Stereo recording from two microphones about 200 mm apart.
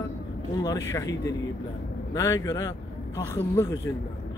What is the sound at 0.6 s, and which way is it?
Speech, 15° left (ahead or behind).